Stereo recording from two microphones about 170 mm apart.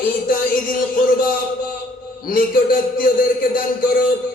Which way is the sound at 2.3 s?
55° left (ahead or behind).